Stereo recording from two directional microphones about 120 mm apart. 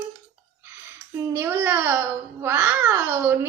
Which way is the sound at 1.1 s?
20° right (ahead or behind).